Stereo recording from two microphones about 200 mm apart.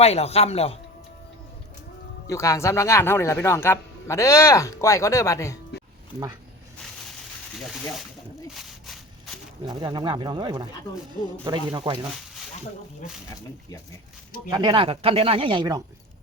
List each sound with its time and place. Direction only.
0.0 s speech: 30° left (ahead or behind)
2.2 s speech: 15° left (ahead or behind)
8.5 s a sound: centre (ahead or behind)
9.6 s speech: 20° right (ahead or behind)
14.5 s speech: 20° right (ahead or behind)